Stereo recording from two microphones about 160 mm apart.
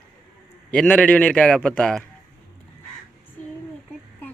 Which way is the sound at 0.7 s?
5° left (ahead or behind).